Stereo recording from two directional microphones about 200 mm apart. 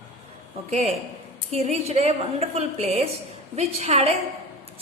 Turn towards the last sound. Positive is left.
turn(degrees=-30)  # may be behind; listen again after turning